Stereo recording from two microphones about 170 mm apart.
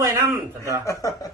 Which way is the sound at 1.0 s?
20° left (ahead or behind).